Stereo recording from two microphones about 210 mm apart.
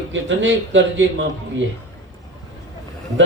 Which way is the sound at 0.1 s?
60° right (ahead or behind).